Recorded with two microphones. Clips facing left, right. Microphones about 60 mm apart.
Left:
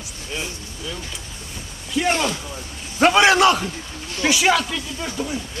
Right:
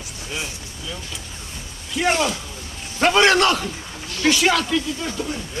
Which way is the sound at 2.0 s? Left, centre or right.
Centre.